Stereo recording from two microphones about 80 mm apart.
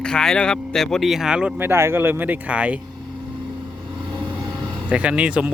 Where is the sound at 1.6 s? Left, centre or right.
Right.